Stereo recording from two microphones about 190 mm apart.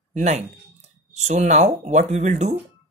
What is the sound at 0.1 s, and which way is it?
Speech, 40° right (ahead or behind).